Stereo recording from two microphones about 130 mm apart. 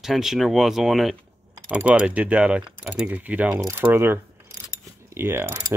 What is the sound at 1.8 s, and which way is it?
Mechanisms, 10° right (ahead or behind).